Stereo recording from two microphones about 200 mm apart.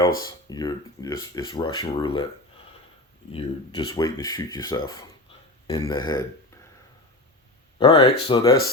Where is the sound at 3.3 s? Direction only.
20° left (ahead or behind).